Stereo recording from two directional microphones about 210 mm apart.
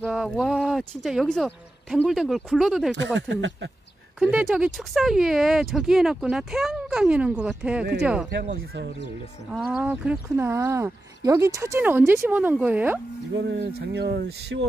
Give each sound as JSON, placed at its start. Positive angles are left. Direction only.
{"t": 0.0, "sound": "speech", "side_deg": 0}
{"t": 3.2, "sound": "speech", "side_deg": -60}
{"t": 4.2, "sound": "speech", "side_deg": -5}
{"t": 9.5, "sound": "speech", "side_deg": -5}
{"t": 13.4, "sound": "speech", "side_deg": -55}